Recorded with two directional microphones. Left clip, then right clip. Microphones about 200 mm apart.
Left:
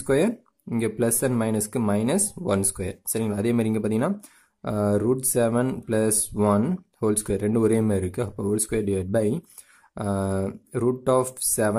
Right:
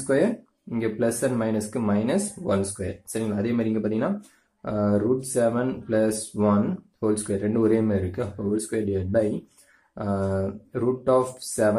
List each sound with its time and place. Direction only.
0.0 s speech: 40° left (ahead or behind)